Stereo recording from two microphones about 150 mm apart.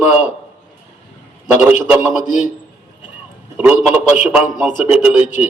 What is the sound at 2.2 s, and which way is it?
Speech, 55° left (ahead or behind).